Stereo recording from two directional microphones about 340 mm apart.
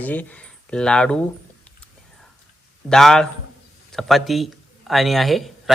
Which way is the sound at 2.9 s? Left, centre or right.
Centre.